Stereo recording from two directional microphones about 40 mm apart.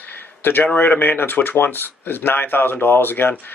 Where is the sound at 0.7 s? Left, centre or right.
Left.